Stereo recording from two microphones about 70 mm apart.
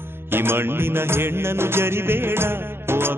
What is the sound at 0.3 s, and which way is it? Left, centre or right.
Music, right.